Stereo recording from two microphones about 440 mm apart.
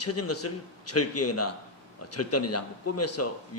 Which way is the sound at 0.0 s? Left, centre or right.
Left.